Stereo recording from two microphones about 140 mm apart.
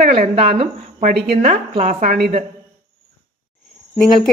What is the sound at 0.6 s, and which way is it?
Speech, 60° right (ahead or behind).